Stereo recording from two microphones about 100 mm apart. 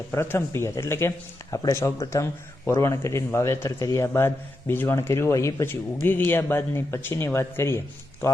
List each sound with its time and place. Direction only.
0.1 s speech: 25° left (ahead or behind)